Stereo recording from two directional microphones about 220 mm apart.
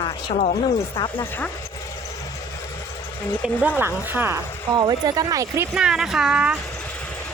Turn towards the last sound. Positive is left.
turn(degrees=-5)  # may be behind; listen again after turning